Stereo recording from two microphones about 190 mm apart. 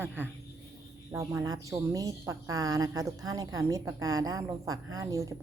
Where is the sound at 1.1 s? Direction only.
15° right (ahead or behind).